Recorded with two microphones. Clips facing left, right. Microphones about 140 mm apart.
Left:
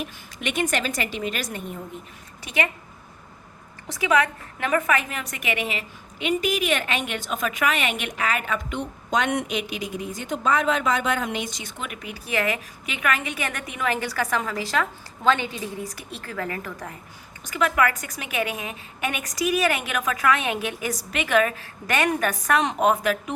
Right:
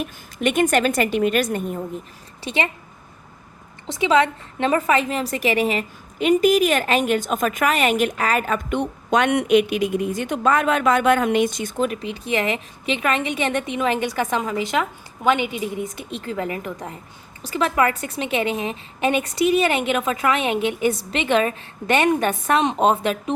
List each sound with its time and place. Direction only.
0.0 s a woman's voice: 50° right (ahead or behind)
2.4 s a woman's voice: 25° right (ahead or behind)
3.8 s a woman's voice: 25° right (ahead or behind); by 11.7 s 55° right (ahead or behind)
11.8 s a woman's voice: 30° right (ahead or behind)